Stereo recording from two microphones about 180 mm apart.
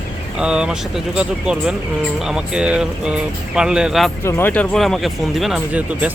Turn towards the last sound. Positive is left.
turn(degrees=-5)  # may be behind; listen again after turning